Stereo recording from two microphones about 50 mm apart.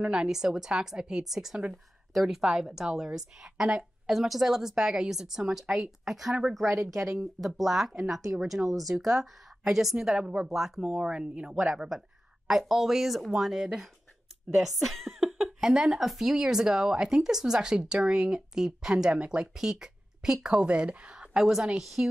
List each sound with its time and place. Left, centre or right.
0.0 s speech: centre
9.9 s speech: centre
11.0 s speech: centre